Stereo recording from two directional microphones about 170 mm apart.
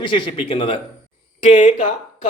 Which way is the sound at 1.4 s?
45° left (ahead or behind).